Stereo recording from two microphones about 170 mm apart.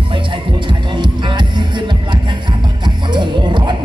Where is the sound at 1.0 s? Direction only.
25° right (ahead or behind).